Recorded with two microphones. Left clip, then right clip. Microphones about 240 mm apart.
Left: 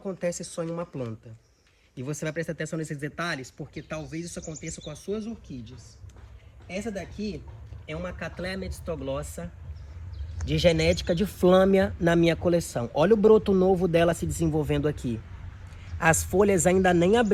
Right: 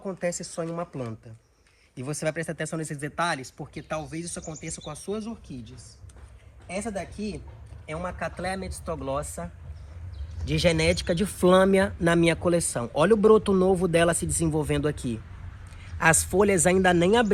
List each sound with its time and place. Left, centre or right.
0.0 s a woman's voice: centre
2.0 s speech: centre
6.7 s speech: centre
7.0 s a woman's voice: right
7.9 s speech: centre
10.4 s a man's voice: right